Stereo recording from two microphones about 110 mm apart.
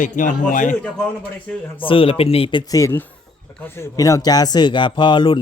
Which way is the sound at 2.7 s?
30° left (ahead or behind).